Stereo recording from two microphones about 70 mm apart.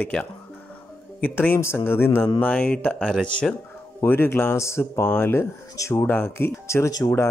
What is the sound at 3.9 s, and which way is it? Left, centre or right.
Speech, left.